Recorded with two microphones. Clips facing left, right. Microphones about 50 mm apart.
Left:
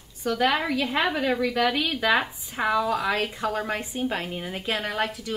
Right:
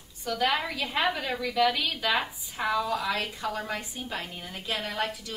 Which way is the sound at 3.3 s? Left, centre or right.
Centre.